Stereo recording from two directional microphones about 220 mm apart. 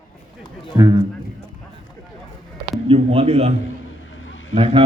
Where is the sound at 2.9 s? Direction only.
25° right (ahead or behind).